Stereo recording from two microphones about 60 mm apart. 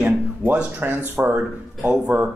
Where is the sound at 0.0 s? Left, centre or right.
Centre.